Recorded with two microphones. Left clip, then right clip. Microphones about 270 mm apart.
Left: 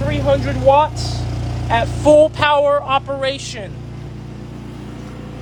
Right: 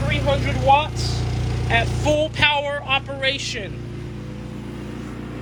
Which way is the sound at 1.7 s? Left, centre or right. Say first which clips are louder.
Left 7 dB; centre.